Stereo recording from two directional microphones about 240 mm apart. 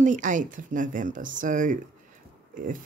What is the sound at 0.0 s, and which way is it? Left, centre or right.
Speech, right.